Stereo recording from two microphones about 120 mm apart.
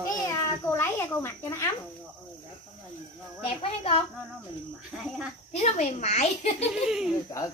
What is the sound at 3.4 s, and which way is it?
Speech, 50° left (ahead or behind).